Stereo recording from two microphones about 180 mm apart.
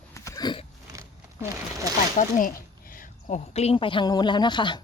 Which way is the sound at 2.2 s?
50° left (ahead or behind).